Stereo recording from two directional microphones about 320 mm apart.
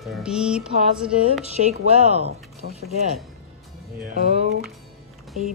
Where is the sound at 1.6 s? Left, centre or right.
Centre.